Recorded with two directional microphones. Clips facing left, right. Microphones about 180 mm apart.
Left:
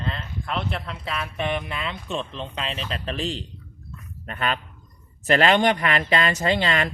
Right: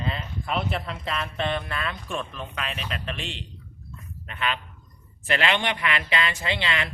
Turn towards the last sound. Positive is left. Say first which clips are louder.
# left 6 dB
turn(degrees=45)  # may be behind; listen again after turning